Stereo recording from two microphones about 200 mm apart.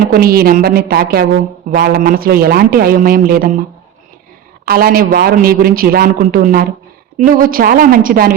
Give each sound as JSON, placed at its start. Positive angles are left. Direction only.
{"t": 0.1, "sound": "a man's voice", "side_deg": -50}
{"t": 4.6, "sound": "a man's voice", "side_deg": -50}